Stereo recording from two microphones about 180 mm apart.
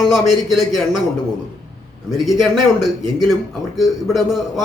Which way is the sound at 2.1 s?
Centre (ahead or behind).